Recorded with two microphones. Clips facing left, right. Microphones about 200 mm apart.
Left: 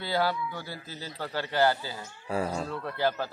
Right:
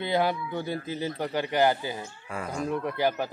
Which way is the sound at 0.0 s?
20° right (ahead or behind).